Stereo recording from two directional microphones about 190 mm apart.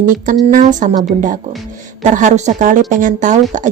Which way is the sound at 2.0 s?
40° right (ahead or behind).